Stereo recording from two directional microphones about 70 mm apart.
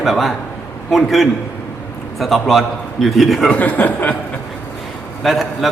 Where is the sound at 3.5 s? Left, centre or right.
Left.